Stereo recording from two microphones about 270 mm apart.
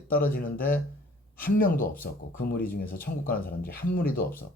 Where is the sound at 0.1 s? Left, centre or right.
Left.